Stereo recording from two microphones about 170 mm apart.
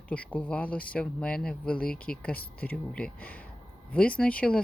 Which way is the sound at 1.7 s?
60° left (ahead or behind).